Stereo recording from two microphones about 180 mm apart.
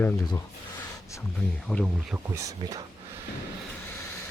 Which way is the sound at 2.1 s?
15° right (ahead or behind).